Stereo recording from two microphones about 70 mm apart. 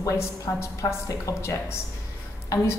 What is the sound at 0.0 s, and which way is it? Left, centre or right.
A woman's voice, left.